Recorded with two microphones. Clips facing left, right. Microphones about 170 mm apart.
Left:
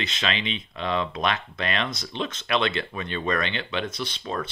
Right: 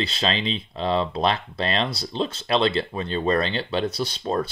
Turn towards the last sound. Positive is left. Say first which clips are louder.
# right 5 dB
turn(degrees=-40)  # may be behind; listen again after turning